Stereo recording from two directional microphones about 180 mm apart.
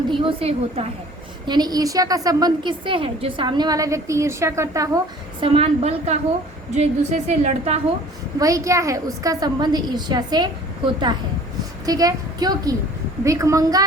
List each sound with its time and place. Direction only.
0.1 s a woman's voice: 30° right (ahead or behind)
5.4 s a woman's voice: 35° right (ahead or behind)
8.4 s a woman's voice: 20° right (ahead or behind)